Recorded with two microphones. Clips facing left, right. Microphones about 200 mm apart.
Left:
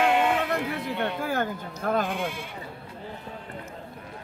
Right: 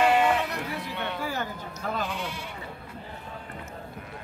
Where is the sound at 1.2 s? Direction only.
55° left (ahead or behind).